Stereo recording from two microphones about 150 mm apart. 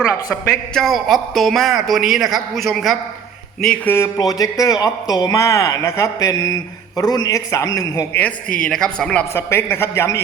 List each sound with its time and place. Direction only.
0.4 s a man's voice: 5° left (ahead or behind); by 8.0 s 25° left (ahead or behind)
8.1 s a woman's voice: 10° left (ahead or behind)
9.3 s a woman's voice: 15° left (ahead or behind)